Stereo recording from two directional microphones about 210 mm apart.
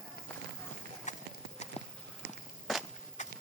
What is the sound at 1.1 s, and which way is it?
Clip-clop, 35° left (ahead or behind).